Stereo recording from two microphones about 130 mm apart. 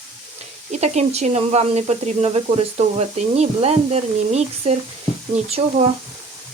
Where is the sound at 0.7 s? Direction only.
60° right (ahead or behind).